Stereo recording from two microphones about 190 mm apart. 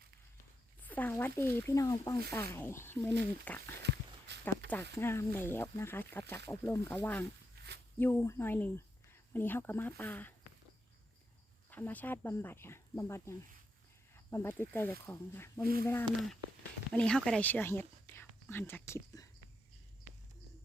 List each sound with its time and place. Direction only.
0.8 s a sound: 10° left (ahead or behind)
1.4 s speech: 10° left (ahead or behind)
3.8 s walk: 65° right (ahead or behind)
4.9 s speech: 15° left (ahead or behind)
11.7 s speech: 10° left (ahead or behind)